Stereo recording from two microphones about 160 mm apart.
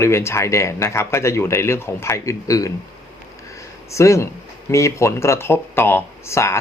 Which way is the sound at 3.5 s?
20° left (ahead or behind).